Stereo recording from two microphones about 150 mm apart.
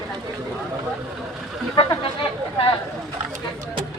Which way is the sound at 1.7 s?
30° left (ahead or behind).